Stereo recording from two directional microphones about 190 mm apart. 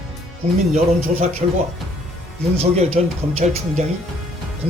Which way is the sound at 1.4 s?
35° right (ahead or behind).